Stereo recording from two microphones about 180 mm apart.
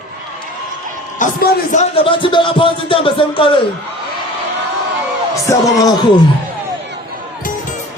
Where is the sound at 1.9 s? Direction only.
30° left (ahead or behind).